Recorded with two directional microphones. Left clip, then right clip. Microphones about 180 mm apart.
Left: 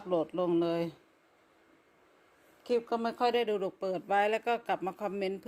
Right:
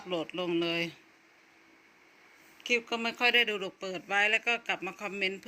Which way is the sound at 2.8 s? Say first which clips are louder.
Left 1 dB; 5° left (ahead or behind).